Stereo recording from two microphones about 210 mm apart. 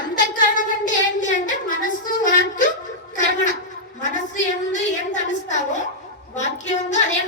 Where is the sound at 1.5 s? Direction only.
40° left (ahead or behind).